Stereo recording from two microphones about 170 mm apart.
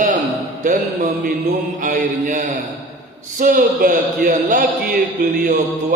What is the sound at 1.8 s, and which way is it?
Mantra, 50° right (ahead or behind).